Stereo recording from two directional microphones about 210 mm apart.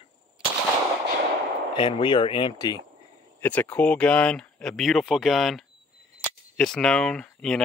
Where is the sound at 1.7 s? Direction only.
25° left (ahead or behind).